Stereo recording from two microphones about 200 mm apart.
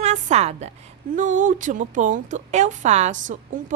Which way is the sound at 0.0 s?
35° right (ahead or behind).